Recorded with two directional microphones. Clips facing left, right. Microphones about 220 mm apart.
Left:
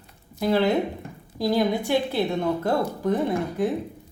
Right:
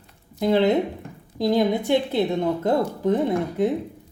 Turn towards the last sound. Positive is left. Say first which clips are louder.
# right 2 dB
turn(degrees=-20)  # may be behind; listen again after turning